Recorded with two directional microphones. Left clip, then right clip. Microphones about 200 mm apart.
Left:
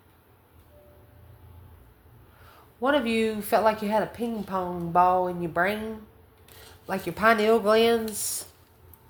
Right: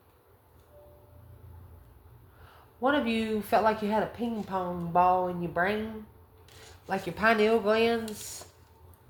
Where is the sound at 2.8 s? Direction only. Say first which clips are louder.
Left 4 dB; 35° left (ahead or behind).